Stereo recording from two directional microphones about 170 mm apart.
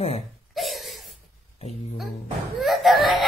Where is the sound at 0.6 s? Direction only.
Centre (ahead or behind).